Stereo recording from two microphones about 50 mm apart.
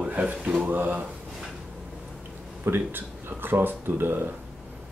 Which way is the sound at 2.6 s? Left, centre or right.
Right.